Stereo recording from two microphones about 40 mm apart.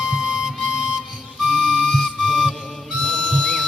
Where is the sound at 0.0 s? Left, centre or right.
Centre.